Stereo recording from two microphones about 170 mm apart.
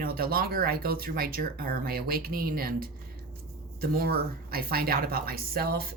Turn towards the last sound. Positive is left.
turn(degrees=-65)  # may be behind; listen again after turning